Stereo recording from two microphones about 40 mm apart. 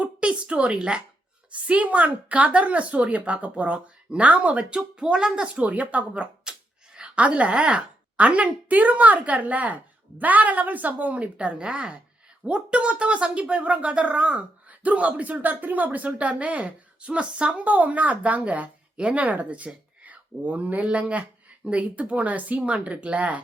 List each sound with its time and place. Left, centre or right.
0.0 s a sound: right
0.8 s speech: right
1.5 s speech: right
5.5 s speech: right
6.5 s a sound: centre
6.9 s speech: right
17.6 s speech: right
19.2 s speech: right